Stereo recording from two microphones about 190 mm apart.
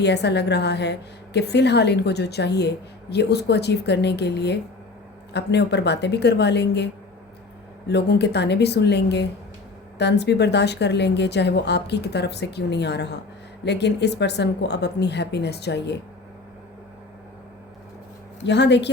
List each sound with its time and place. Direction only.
0.0 s a woman's voice: 60° left (ahead or behind)
7.9 s a woman's voice: 60° left (ahead or behind)
18.4 s a woman's voice: 65° left (ahead or behind)